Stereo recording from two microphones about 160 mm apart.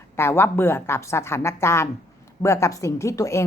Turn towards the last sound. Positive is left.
turn(degrees=20)  # may be behind; listen again after turning